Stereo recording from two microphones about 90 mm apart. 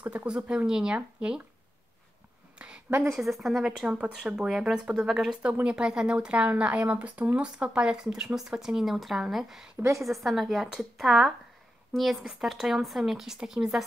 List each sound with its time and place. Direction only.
0.0 s speech: 15° right (ahead or behind)
2.6 s a sound: 15° right (ahead or behind)
3.1 s speech: centre (ahead or behind)
9.8 s a woman's voice: 35° right (ahead or behind)
10.0 s speech: centre (ahead or behind)